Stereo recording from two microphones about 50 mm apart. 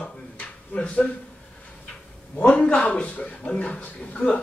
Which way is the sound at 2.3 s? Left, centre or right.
Left.